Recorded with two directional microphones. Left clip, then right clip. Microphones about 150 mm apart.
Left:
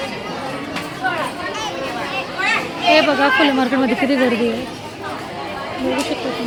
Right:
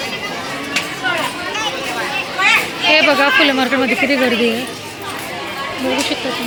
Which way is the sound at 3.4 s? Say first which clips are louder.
Right 2 dB; 15° left (ahead or behind).